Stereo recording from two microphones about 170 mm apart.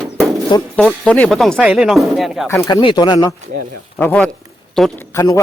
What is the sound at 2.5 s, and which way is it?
Speech, 20° left (ahead or behind).